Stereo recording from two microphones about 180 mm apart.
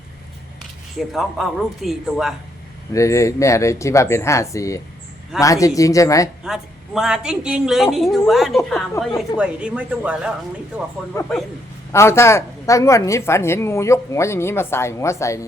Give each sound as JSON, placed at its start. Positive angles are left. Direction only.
{"t": 0.9, "sound": "a woman's voice", "side_deg": 0}
{"t": 2.9, "sound": "speech", "side_deg": 15}
{"t": 6.4, "sound": "a woman's voice", "side_deg": 0}
{"t": 11.1, "sound": "speech", "side_deg": 15}